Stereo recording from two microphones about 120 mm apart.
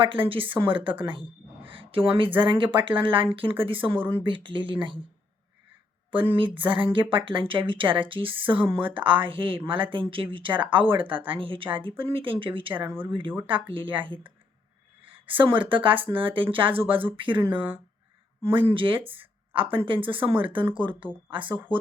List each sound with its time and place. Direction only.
0.0 s speech: 45° right (ahead or behind)
6.1 s speech: 45° right (ahead or behind)
12.7 s speech: 20° right (ahead or behind)
13.5 s speech: 45° right (ahead or behind)
15.0 s a sound: 45° right (ahead or behind)
15.7 s speech: 45° right (ahead or behind)
21.5 s speech: 15° right (ahead or behind)